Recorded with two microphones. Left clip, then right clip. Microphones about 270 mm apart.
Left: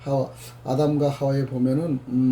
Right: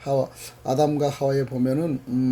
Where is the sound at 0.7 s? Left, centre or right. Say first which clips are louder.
Right 1 dB; right.